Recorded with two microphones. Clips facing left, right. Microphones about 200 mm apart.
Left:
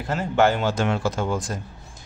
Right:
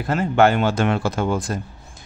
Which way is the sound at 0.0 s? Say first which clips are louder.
Right 3 dB; 60° right (ahead or behind).